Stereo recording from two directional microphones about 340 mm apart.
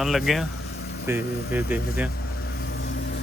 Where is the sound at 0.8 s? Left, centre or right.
Left.